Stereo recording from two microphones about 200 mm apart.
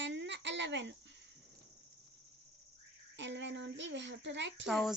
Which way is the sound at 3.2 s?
60° right (ahead or behind).